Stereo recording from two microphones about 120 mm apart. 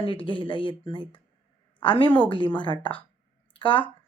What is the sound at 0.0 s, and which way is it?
A woman's voice, 45° left (ahead or behind).